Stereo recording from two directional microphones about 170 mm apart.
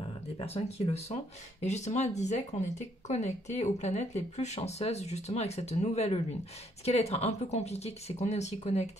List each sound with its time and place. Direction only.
0.4 s speech: 35° left (ahead or behind)